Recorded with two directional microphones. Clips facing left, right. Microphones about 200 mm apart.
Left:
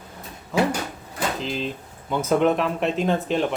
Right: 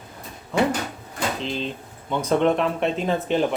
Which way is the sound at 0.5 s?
Centre (ahead or behind).